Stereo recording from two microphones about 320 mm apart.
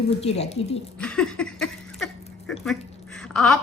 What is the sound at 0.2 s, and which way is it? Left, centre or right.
Speech, centre.